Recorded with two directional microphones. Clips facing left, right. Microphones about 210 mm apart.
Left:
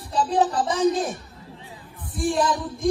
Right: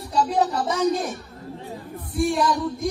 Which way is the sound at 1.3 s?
45° right (ahead or behind).